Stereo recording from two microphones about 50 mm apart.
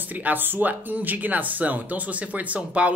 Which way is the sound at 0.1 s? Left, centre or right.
Right.